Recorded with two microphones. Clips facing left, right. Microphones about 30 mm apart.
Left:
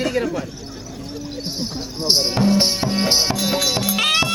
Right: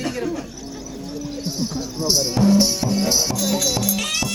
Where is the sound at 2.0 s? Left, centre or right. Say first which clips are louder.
Left 1 dB; left.